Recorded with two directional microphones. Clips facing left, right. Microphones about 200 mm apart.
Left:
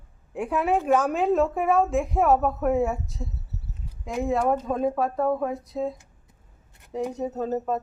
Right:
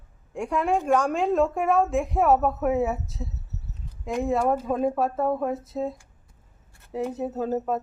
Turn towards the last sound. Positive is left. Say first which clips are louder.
# even
turn(degrees=-5)  # may be behind; listen again after turning